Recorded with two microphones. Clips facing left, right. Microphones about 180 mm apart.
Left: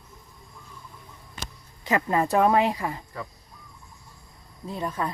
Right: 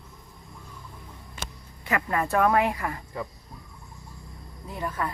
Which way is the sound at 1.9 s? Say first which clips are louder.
Left 3 dB; 25° left (ahead or behind).